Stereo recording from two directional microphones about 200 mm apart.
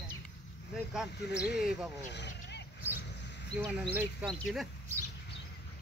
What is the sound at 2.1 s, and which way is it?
Vehicle, 60° left (ahead or behind).